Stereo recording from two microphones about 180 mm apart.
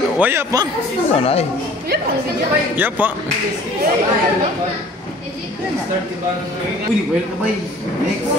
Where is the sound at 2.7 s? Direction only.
10° right (ahead or behind).